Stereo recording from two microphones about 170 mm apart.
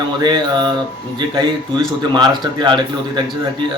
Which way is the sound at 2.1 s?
25° right (ahead or behind).